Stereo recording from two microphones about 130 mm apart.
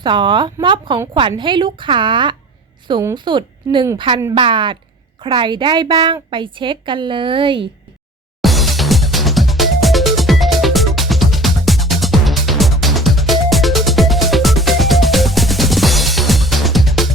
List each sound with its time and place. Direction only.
0.0 s a woman's voice: 35° right (ahead or behind)
8.4 s music: centre (ahead or behind)